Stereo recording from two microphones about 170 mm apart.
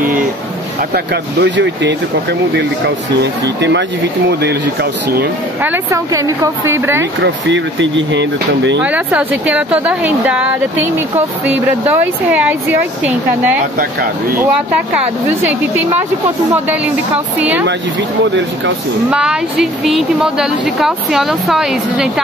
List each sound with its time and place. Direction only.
0.9 s speech: 90° right
3.2 s speech: 90° right
4.3 s speech: 75° right (ahead or behind)
5.6 s speech: 15° right (ahead or behind)
7.2 s speech: 90° right
8.8 s speech: 10° right (ahead or behind)
17.4 s speech: 10° right (ahead or behind)
19.0 s speech: 5° right (ahead or behind)